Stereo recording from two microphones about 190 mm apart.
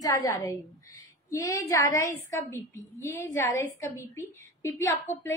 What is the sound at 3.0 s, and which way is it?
A woman's voice, 15° left (ahead or behind).